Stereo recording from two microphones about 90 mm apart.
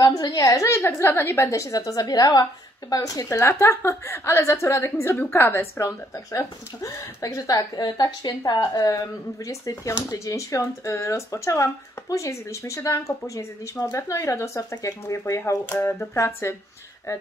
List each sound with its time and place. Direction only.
0.0 s speech: 45° left (ahead or behind)
7.8 s speech: 55° left (ahead or behind); by 16.5 s 30° left (ahead or behind)